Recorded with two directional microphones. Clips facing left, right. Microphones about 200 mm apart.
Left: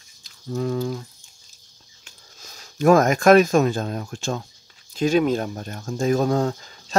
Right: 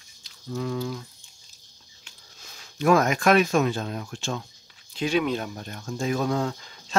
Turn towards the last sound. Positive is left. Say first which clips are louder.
# left 5 dB
turn(degrees=40)  # may be behind; listen again after turning